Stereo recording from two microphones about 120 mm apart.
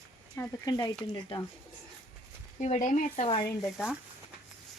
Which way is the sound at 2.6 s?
85° left.